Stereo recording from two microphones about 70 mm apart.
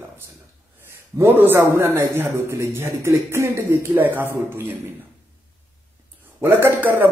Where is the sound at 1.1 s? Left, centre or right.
Right.